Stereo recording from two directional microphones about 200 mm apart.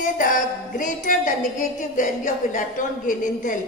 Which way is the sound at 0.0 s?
40° left (ahead or behind).